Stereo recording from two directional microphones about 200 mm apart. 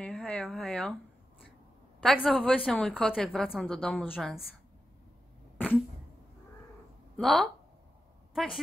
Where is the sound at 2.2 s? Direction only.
5° left (ahead or behind).